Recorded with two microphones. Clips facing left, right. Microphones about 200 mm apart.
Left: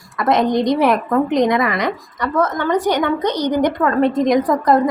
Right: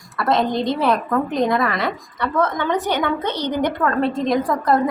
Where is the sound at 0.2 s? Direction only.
20° left (ahead or behind).